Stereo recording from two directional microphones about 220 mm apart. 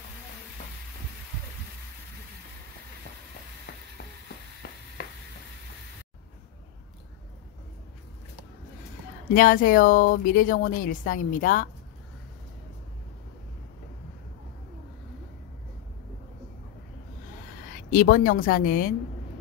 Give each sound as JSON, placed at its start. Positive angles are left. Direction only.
{"t": 9.3, "sound": "speech", "side_deg": 40}
{"t": 17.9, "sound": "speech", "side_deg": 40}